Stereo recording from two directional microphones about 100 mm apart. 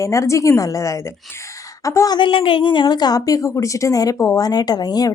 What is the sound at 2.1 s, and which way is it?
A woman's voice, 55° left (ahead or behind).